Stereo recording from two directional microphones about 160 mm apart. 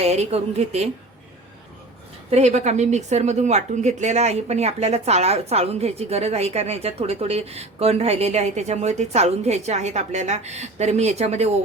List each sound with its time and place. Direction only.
0.0 s a woman's voice: 40° right (ahead or behind)
2.3 s a woman's voice: 45° right (ahead or behind)